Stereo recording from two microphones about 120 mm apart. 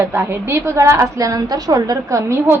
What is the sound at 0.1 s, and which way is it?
A woman's voice, 20° right (ahead or behind).